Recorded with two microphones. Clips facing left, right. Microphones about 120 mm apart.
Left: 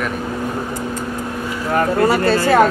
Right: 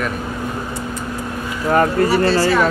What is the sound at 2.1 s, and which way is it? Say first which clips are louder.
Speech: left 1 dB; 50° left (ahead or behind).